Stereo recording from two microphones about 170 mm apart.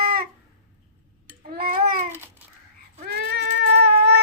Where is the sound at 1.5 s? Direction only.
60° right (ahead or behind).